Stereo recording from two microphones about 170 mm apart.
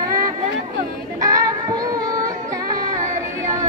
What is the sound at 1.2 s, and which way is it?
Female singing, 20° right (ahead or behind).